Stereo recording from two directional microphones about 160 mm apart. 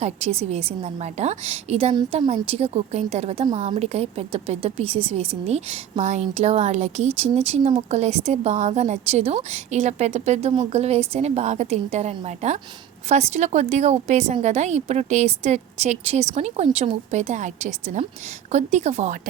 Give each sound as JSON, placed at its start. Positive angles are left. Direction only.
{"t": 0.0, "sound": "a woman's voice", "side_deg": -40}